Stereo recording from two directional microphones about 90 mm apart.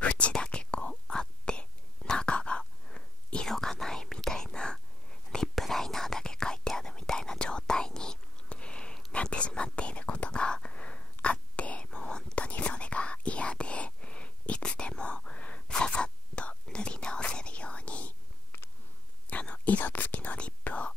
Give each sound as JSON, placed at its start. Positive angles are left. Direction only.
{"t": 0.0, "sound": "whispering", "side_deg": 15}
{"t": 19.2, "sound": "whispering", "side_deg": 15}